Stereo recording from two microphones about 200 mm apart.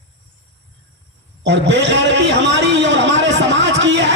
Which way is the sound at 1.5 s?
60° right (ahead or behind).